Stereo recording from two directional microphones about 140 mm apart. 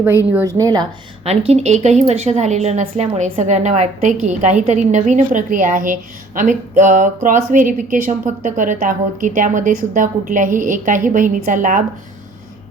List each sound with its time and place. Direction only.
0.3 s a woman's voice: 25° right (ahead or behind)
1.2 s a woman's voice: 45° right (ahead or behind); by 11.8 s 70° right (ahead or behind)